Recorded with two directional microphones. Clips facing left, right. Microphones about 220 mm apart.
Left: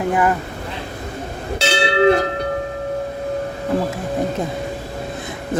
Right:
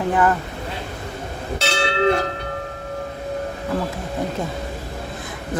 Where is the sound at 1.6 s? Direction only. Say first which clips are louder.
Left 4 dB; 35° left (ahead or behind).